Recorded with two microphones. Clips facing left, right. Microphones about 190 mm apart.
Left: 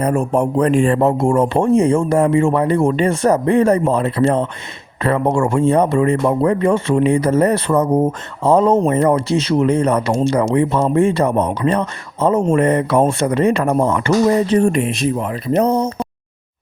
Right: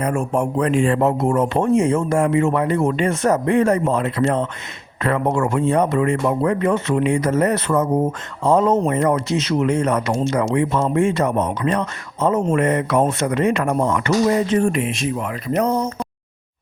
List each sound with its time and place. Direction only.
0.0 s speech: 35° left (ahead or behind)